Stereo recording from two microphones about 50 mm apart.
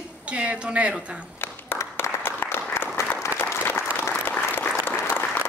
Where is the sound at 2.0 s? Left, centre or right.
Left.